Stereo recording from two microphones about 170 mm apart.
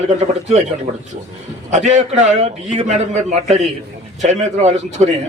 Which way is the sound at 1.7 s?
45° right (ahead or behind).